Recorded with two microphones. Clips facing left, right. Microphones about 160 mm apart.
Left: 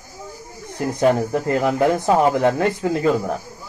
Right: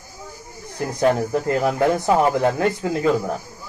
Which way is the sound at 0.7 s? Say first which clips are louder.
Left 2 dB; 15° left (ahead or behind).